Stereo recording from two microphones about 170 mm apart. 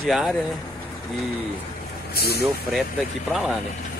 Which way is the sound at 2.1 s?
65° left (ahead or behind).